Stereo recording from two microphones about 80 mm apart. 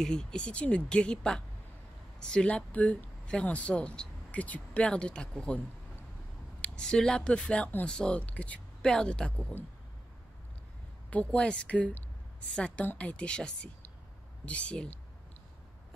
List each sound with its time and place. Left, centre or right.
0.0 s speech: centre
6.6 s speech: centre
11.1 s a woman's voice: centre